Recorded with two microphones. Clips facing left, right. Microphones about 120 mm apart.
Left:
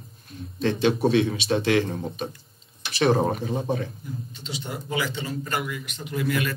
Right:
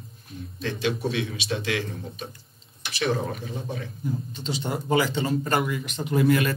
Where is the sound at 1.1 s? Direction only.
35° left (ahead or behind).